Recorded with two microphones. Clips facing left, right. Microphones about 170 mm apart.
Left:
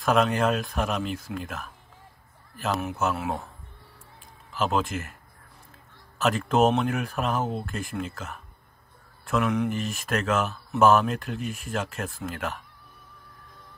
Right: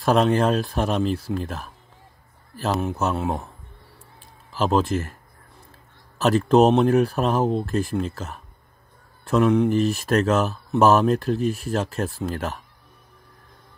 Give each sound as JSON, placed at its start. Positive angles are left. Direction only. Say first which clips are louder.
{"t": 0.0, "sound": "speech", "louder": "right 4 dB", "side_deg": -35}
{"t": 2.8, "sound": "speech", "louder": "right 4 dB", "side_deg": -30}
{"t": 4.5, "sound": "speech", "louder": "right 5 dB", "side_deg": -35}
{"t": 6.1, "sound": "speech", "louder": "right 6 dB", "side_deg": -35}